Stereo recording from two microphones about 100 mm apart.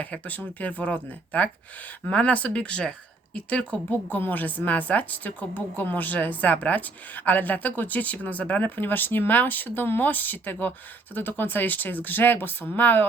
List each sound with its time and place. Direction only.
0.0 s a woman's voice: 15° left (ahead or behind)